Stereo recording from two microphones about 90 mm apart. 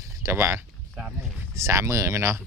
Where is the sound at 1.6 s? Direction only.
30° right (ahead or behind).